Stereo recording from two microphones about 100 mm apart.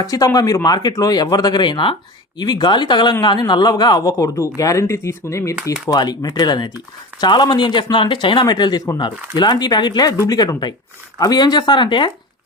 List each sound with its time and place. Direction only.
0.0 s speech: 40° left (ahead or behind)
6.0 s speech: 45° left (ahead or behind)